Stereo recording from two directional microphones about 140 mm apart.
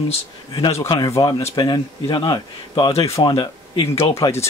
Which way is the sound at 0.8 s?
35° left (ahead or behind).